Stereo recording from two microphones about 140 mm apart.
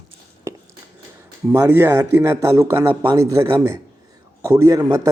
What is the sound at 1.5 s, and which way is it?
A man's voice, 20° right (ahead or behind).